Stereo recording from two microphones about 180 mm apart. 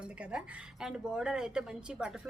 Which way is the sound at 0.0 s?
5° right (ahead or behind).